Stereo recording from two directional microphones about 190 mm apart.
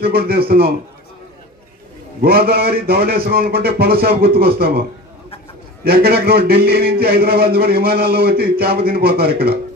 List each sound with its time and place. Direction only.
0.0 s a man's voice: 55° right (ahead or behind)
2.2 s a man's voice: 55° right (ahead or behind)
5.9 s a man's voice: 55° right (ahead or behind)